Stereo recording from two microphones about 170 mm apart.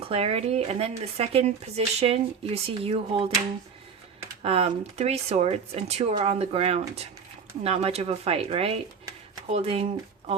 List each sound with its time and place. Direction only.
0.1 s speech: 35° right (ahead or behind)
4.4 s speech: 35° right (ahead or behind)